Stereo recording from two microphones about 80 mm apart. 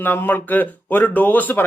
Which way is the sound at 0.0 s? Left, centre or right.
Left.